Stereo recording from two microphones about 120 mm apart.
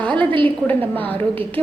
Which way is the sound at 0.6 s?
15° left (ahead or behind).